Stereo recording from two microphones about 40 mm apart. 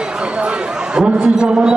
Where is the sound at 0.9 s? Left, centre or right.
Right.